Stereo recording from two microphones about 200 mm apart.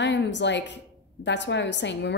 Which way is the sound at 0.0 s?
60° left (ahead or behind).